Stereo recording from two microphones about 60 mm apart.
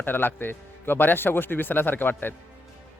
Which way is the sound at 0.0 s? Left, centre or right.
Left.